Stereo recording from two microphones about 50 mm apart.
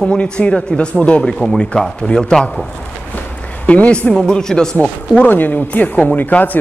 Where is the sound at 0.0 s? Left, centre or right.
Left.